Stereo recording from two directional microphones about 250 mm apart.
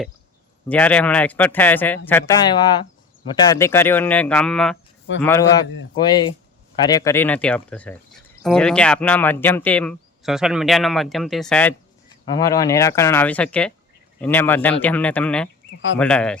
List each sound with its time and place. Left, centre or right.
0.7 s speech: centre
12.0 s speech: centre